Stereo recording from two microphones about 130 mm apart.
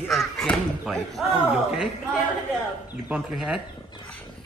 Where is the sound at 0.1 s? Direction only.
Centre (ahead or behind).